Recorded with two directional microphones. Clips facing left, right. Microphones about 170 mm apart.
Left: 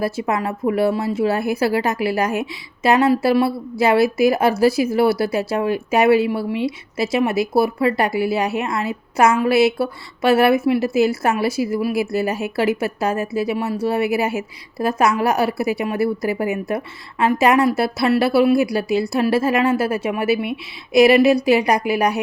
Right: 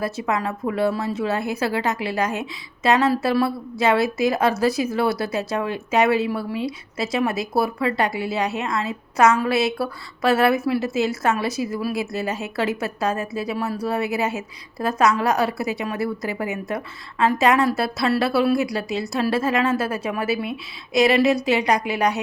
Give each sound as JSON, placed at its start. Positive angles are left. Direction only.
{"t": 0.0, "sound": "a woman's voice", "side_deg": 30}
{"t": 20.2, "sound": "speech", "side_deg": -30}
{"t": 20.9, "sound": "a woman's voice", "side_deg": 30}